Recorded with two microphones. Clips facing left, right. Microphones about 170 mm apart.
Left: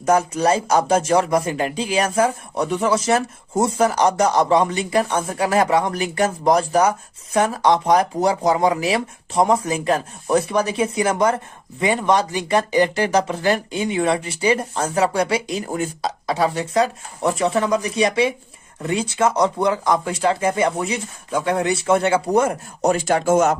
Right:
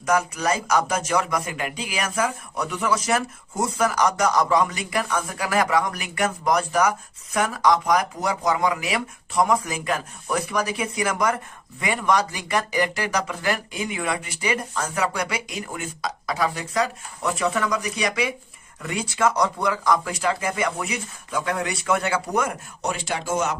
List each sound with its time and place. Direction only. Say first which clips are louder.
0.0 s speech: left 5 dB; 30° left (ahead or behind)
22.8 s speech: left 10 dB; 45° left (ahead or behind)